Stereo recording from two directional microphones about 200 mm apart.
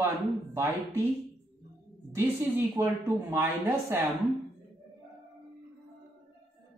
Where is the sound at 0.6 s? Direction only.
10° right (ahead or behind).